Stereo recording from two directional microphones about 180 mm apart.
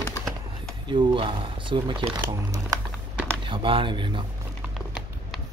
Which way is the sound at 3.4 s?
30° right (ahead or behind).